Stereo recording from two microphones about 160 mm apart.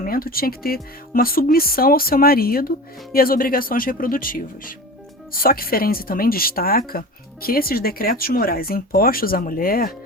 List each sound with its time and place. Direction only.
0.0 s speech: 65° left (ahead or behind)